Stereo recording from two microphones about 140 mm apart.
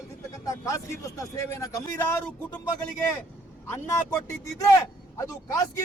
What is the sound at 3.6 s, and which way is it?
A man's voice, 15° left (ahead or behind).